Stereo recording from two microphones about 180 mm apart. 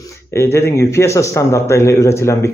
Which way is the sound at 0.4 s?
15° left (ahead or behind).